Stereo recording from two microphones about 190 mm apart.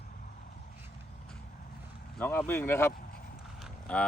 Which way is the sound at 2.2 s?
10° left (ahead or behind).